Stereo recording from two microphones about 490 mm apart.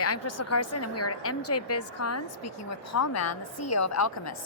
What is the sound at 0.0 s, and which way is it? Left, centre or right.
A woman's voice, left.